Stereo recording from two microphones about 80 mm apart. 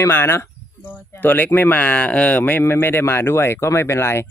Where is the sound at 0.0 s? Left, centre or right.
Left.